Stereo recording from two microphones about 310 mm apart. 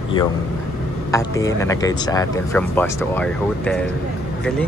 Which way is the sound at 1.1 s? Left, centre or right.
Centre.